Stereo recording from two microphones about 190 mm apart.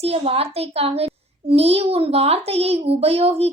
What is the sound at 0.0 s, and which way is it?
A child's voice, 30° right (ahead or behind).